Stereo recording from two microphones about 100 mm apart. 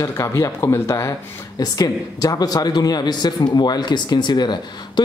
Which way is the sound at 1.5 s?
40° left (ahead or behind).